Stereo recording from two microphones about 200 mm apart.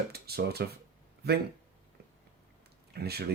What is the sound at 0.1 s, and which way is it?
Speech, 50° right (ahead or behind).